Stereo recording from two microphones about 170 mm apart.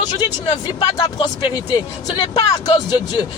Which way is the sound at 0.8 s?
25° left (ahead or behind).